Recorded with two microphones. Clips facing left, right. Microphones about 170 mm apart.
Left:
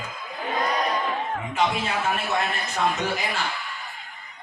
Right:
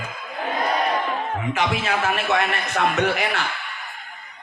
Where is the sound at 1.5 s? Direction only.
75° right (ahead or behind).